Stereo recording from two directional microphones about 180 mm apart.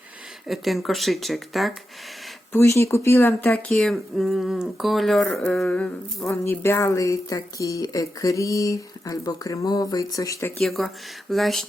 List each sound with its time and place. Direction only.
0.4 s speech: centre (ahead or behind)
2.5 s speech: 15° left (ahead or behind)
10.6 s speech: centre (ahead or behind)